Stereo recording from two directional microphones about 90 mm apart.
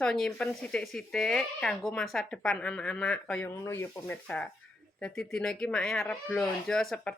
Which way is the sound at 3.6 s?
35° left (ahead or behind).